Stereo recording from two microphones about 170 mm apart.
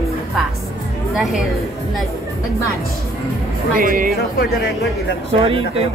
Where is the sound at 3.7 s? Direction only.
55° right (ahead or behind).